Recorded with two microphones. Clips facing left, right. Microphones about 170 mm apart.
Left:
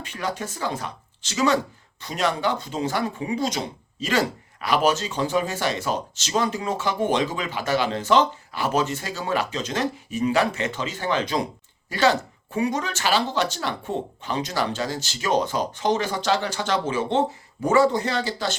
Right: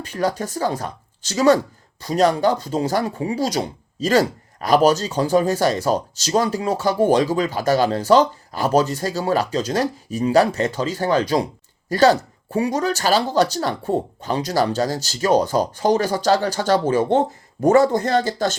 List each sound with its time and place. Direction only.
0.0 s speech: 40° right (ahead or behind)